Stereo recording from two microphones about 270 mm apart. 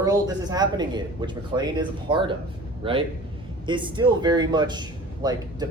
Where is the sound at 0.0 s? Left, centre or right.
Centre.